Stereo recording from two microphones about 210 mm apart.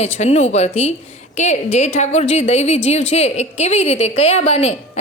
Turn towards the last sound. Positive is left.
turn(degrees=30)  # may be behind; listen again after turning